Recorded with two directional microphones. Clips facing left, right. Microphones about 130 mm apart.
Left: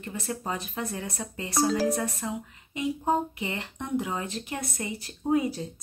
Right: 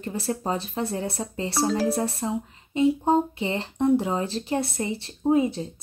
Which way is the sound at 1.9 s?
30° right (ahead or behind).